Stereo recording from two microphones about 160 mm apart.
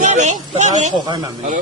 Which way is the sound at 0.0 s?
45° right (ahead or behind).